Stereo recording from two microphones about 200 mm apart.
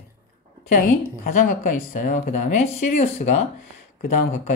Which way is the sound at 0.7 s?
45° left (ahead or behind).